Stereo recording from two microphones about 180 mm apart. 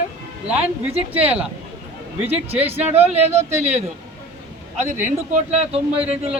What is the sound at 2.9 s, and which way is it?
Speech, 35° right (ahead or behind).